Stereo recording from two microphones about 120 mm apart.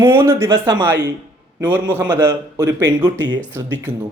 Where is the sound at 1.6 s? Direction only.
15° right (ahead or behind); by 3.4 s 35° right (ahead or behind).